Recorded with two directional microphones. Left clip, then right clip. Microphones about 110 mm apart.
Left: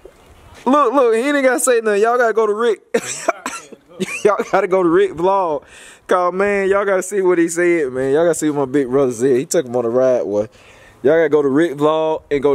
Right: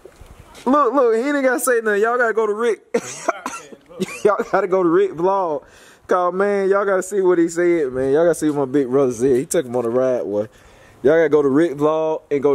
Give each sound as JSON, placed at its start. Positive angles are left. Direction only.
{"t": 0.7, "sound": "a man's voice", "side_deg": 20}